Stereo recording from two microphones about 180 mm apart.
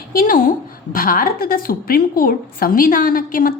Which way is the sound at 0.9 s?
50° left (ahead or behind).